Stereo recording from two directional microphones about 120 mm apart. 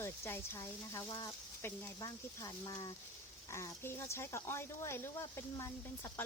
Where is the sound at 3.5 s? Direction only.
20° left (ahead or behind).